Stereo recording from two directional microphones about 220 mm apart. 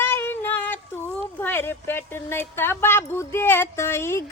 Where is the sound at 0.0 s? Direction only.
10° left (ahead or behind).